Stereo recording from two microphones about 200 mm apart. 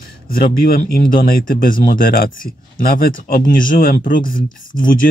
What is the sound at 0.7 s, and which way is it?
Speech, 45° left (ahead or behind).